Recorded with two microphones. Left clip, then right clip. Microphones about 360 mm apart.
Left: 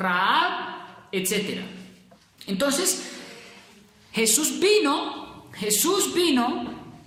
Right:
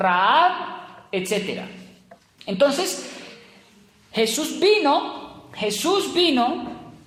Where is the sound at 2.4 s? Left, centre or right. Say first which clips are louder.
Right 7 dB; centre.